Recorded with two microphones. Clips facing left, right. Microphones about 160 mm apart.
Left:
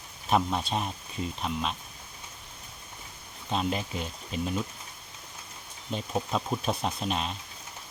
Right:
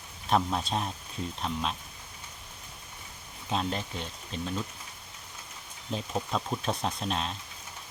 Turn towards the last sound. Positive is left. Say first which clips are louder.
# left 1 dB
turn(degrees=5)  # may be behind; listen again after turning